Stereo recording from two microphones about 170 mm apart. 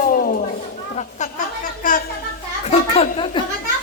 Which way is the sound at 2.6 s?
40° left (ahead or behind).